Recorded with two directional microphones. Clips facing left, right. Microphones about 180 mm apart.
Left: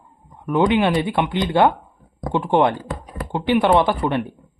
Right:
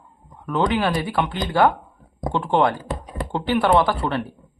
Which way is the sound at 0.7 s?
20° left (ahead or behind).